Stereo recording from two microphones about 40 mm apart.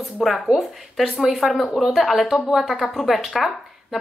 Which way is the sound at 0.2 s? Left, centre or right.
Centre.